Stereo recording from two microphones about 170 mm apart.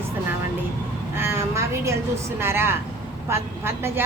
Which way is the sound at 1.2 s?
15° right (ahead or behind).